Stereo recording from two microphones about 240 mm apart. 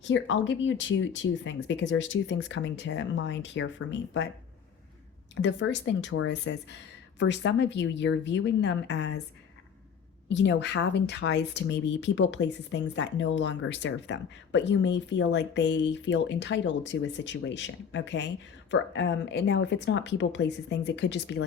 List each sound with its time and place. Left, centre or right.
0.1 s speech: left
5.3 s speech: left
10.2 s speech: left